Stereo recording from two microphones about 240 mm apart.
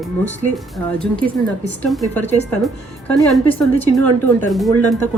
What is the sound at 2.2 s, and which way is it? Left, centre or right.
Speech, left.